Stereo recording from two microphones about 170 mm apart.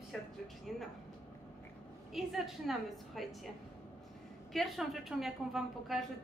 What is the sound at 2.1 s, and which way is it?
A woman's voice, centre (ahead or behind).